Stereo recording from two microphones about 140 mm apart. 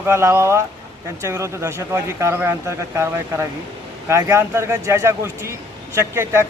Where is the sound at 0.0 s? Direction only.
20° right (ahead or behind).